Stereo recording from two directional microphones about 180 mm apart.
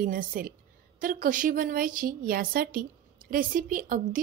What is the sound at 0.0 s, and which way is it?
A woman's voice, 50° right (ahead or behind).